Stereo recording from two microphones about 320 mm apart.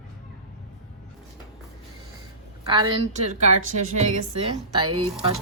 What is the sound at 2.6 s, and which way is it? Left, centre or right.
Speech, centre.